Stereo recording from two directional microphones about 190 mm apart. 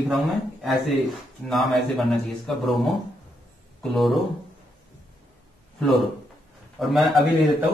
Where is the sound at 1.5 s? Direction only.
Centre (ahead or behind).